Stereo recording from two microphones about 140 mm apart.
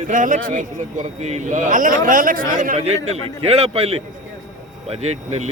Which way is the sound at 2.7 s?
50° right (ahead or behind).